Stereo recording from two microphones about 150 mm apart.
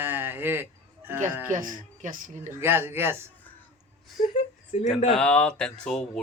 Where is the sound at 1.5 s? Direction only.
60° right (ahead or behind).